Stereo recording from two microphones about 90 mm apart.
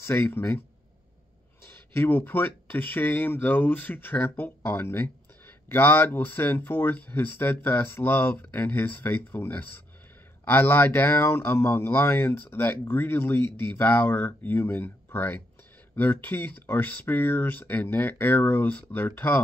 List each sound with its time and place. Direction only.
0.0 s speech: 25° left (ahead or behind)
1.7 s speech: 20° left (ahead or behind)